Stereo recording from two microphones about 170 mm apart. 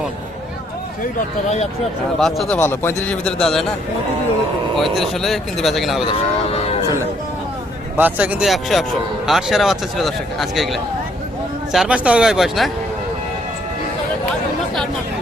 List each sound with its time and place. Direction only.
1.5 s speech: 40° left (ahead or behind)
2.1 s a man's voice: centre (ahead or behind)
4.8 s speech: centre (ahead or behind)
6.1 s speech: 35° left (ahead or behind)
7.9 s speech: 10° right (ahead or behind)